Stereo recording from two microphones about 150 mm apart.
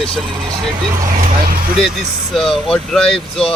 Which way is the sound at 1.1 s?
65° right (ahead or behind).